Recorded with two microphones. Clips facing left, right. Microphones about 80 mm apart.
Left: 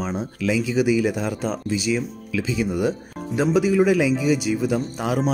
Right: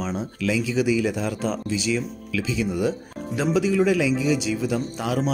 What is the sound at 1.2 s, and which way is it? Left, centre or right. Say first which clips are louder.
Speech: left 1 dB; centre.